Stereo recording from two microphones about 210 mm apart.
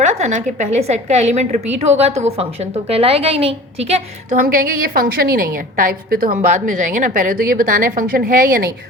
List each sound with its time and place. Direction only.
0.0 s a woman's voice: 35° right (ahead or behind)